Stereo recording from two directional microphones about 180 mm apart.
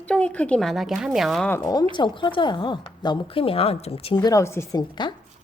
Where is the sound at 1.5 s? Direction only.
20° left (ahead or behind).